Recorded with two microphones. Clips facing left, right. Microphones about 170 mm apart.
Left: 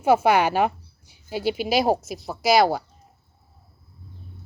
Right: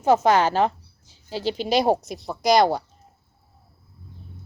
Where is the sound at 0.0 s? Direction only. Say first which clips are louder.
Even; 10° left (ahead or behind).